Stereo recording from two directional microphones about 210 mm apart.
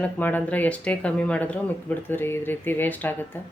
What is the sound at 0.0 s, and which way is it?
Speech, 10° left (ahead or behind).